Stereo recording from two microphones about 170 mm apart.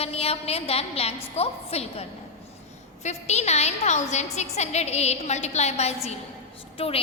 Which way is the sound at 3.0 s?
40° left (ahead or behind).